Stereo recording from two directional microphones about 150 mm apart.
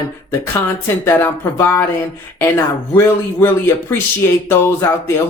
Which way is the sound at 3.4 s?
15° left (ahead or behind).